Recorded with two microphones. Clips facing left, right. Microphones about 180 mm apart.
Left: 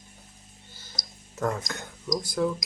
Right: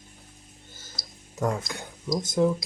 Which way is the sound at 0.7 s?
45° right (ahead or behind).